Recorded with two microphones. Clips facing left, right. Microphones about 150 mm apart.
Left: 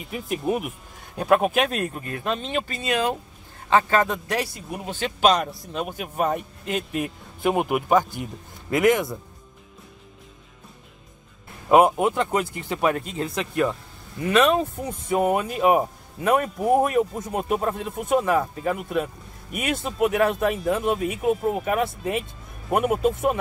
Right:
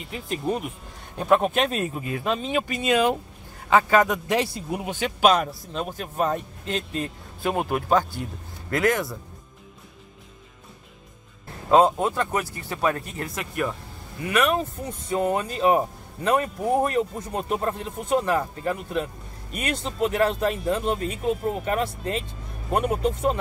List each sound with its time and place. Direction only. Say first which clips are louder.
0.0 s a man's voice: left 2 dB; 5° left (ahead or behind)
2.8 s speech: right 4 dB; 20° right (ahead or behind)
3.7 s a man's voice: right 1 dB; 10° right (ahead or behind); by 9.2 s 15° left (ahead or behind)
11.7 s speech: left 1 dB; 15° left (ahead or behind)